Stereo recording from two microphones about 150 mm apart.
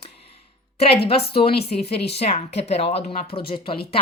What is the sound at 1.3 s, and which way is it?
A woman's voice, 40° left (ahead or behind).